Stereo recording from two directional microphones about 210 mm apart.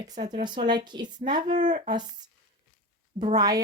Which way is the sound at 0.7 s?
20° right (ahead or behind).